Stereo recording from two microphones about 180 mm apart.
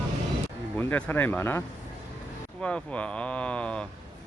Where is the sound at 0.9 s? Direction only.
10° left (ahead or behind).